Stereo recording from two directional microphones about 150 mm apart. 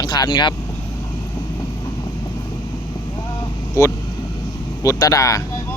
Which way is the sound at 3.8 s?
20° left (ahead or behind).